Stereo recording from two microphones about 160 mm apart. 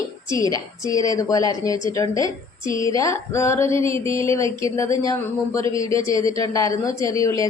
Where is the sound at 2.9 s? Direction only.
20° left (ahead or behind).